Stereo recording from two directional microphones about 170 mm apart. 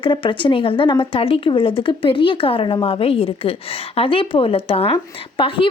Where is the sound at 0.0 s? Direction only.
30° left (ahead or behind).